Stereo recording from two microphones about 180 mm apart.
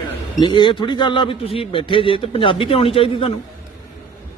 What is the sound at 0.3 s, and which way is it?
A man's voice, 25° left (ahead or behind).